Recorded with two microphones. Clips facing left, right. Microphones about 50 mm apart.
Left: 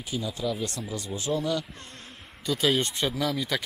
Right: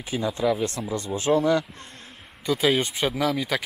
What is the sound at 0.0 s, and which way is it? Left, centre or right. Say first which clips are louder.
Speech: right 6 dB; right.